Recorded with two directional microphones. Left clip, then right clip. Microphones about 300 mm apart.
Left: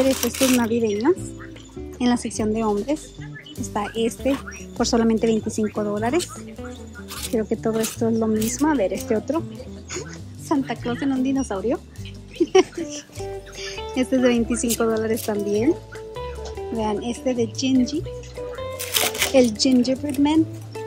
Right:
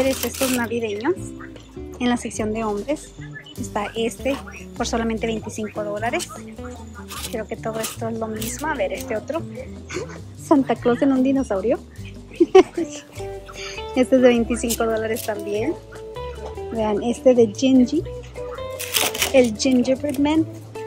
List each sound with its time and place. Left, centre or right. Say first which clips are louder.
0.0 s speech: left 1 dB; centre
2.0 s speech: even; centre
7.3 s speech: left 5 dB; centre
10.5 s speech: right 7 dB; centre
12.5 s music: right 4 dB; centre
14.8 s speech: even; centre
16.2 s music: even; centre
17.6 s speech: right 4 dB; centre
18.6 s music: right 1 dB; centre